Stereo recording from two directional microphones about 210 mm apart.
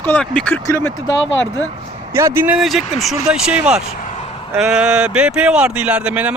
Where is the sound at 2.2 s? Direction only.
10° right (ahead or behind).